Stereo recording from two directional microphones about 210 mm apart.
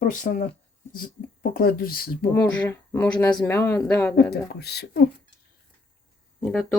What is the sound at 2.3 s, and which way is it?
Speech, 10° left (ahead or behind).